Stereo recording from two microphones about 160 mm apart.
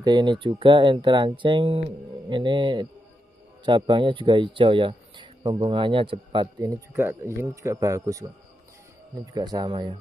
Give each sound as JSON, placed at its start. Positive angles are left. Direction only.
{"t": 0.0, "sound": "a man's voice", "side_deg": -30}